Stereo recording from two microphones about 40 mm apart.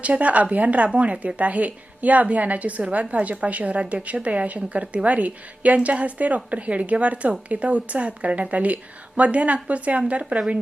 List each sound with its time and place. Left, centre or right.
0.0 s a woman's voice: right